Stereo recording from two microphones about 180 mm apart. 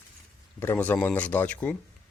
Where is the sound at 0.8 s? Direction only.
5° left (ahead or behind).